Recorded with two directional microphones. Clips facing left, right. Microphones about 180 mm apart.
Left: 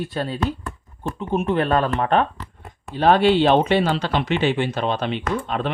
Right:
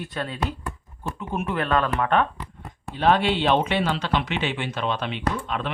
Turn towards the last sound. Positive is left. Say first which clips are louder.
# left 3 dB
turn(degrees=35)  # may be behind; listen again after turning